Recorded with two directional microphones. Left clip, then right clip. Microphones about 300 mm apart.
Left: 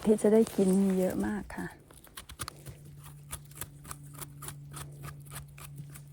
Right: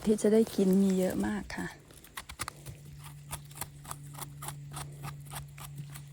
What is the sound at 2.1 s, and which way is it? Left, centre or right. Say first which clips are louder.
Clip-clop: right 3 dB; centre.